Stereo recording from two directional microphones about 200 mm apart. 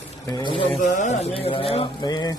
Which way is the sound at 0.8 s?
35° left (ahead or behind).